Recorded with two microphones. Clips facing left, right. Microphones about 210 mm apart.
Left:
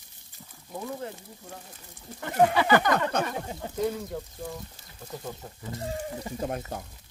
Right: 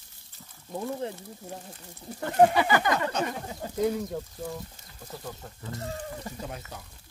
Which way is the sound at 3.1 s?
55° left (ahead or behind).